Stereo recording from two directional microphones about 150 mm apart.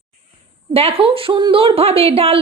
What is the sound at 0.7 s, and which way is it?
A woman's voice, 40° right (ahead or behind).